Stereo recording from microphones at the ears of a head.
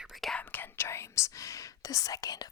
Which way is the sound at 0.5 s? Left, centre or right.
Left.